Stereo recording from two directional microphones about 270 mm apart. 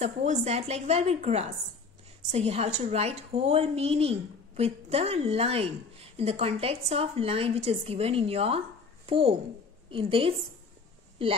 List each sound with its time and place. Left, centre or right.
0.0 s a woman's voice: right